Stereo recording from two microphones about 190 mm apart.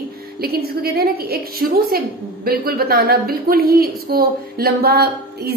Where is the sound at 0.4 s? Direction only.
55° right (ahead or behind).